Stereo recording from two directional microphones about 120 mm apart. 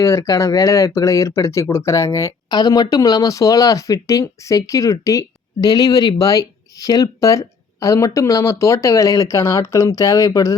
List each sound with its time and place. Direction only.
0.0 s speech: 25° left (ahead or behind)